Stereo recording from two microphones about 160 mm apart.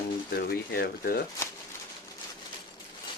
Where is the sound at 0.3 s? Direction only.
75° left (ahead or behind).